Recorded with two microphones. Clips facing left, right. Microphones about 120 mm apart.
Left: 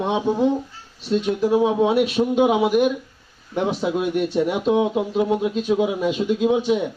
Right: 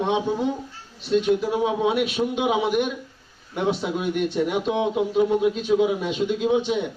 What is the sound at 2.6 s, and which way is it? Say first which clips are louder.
Speech: left 5 dB; 5° left (ahead or behind).